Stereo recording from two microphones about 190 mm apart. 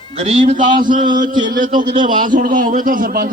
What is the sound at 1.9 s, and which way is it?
Speech, 25° right (ahead or behind).